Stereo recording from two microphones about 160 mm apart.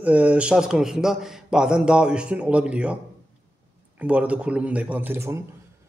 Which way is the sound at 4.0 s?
10° right (ahead or behind).